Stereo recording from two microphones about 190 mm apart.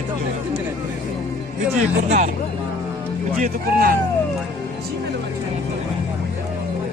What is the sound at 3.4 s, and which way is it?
Speech, 50° right (ahead or behind).